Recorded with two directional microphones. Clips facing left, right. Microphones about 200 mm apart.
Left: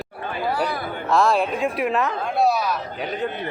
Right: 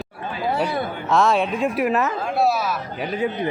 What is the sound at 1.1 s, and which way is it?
Speech, centre (ahead or behind).